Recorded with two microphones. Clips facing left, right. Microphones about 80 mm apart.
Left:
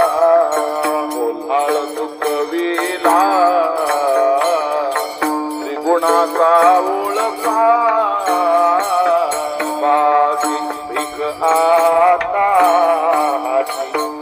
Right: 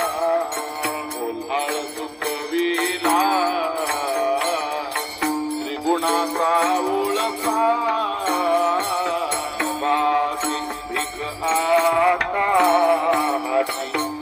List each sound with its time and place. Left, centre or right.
0.2 s music: left
1.5 s music: left
5.8 s music: left
6.7 s music: left
7.5 s music: left
7.9 s music: left
11.5 s music: left
11.9 s music: centre